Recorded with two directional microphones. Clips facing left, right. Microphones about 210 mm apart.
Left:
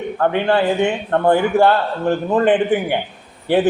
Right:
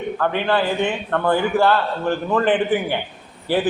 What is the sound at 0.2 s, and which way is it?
A man's voice, 25° left (ahead or behind).